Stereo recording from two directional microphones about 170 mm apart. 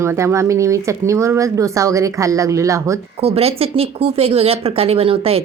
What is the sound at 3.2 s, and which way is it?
Speech, 35° right (ahead or behind).